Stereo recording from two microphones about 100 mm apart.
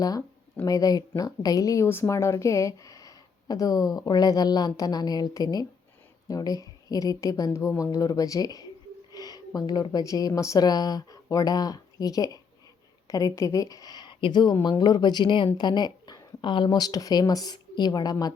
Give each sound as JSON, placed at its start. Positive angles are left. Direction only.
{"t": 0.0, "sound": "a woman's voice", "side_deg": 40}